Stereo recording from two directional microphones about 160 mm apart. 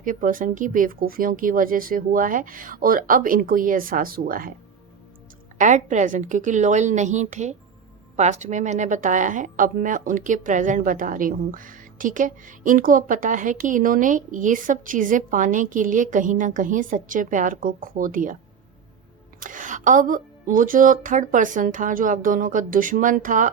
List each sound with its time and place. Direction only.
0.0 s speech: 55° right (ahead or behind)
5.5 s a woman's voice: 50° right (ahead or behind)
19.4 s speech: 55° right (ahead or behind)